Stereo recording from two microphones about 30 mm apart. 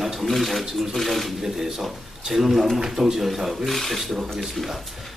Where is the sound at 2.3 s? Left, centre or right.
Centre.